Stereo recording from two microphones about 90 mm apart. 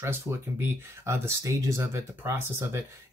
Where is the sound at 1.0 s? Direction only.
35° right (ahead or behind).